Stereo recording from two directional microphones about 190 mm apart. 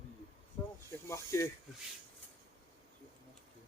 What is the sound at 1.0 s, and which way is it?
Speech, 15° left (ahead or behind).